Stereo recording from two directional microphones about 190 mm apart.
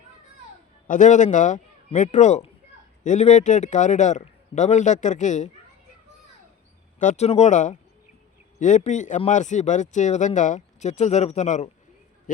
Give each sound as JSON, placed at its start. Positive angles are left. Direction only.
{"t": 0.9, "sound": "speech", "side_deg": 40}
{"t": 7.0, "sound": "speech", "side_deg": 40}